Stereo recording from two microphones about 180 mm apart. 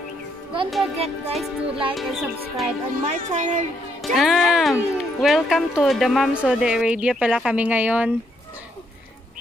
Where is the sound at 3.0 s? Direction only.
40° right (ahead or behind).